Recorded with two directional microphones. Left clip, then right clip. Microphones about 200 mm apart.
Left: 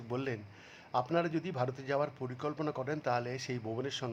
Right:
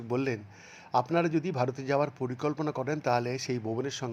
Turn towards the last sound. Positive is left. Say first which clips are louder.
# right 4 dB
turn(degrees=-15)  # may be behind; listen again after turning